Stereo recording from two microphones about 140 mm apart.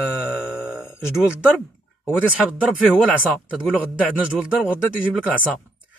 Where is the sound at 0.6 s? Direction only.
5° right (ahead or behind).